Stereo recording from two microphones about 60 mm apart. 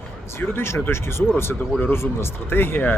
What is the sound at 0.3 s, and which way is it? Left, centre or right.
Speech, left.